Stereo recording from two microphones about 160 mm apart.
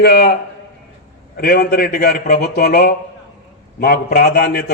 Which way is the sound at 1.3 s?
70° left (ahead or behind).